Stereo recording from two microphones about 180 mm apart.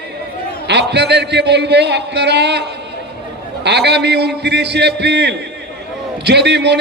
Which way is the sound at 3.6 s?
70° right (ahead or behind).